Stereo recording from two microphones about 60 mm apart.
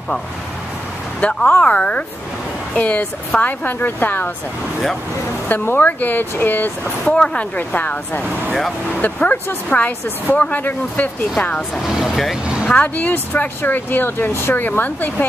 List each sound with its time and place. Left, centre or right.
1.2 s speech: centre; by 4.3 s left
5.5 s speech: left
7.1 s speech: left
8.5 s speech: centre
9.0 s speech: left
11.7 s speech: centre
12.6 s speech: left